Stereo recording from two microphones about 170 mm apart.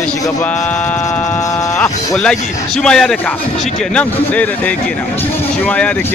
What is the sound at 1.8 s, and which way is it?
A man's voice, 5° left (ahead or behind).